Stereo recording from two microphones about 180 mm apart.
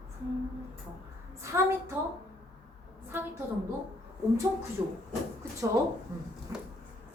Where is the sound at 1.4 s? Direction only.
15° right (ahead or behind).